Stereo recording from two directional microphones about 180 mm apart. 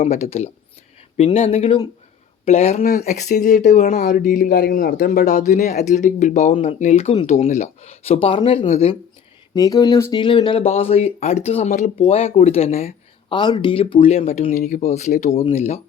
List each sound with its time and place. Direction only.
0.0 s speech: 35° left (ahead or behind); by 5.7 s 55° left (ahead or behind)
5.7 s speech: 45° left (ahead or behind)
9.6 s speech: 20° left (ahead or behind); by 12.9 s 35° left (ahead or behind)
13.3 s speech: 25° left (ahead or behind)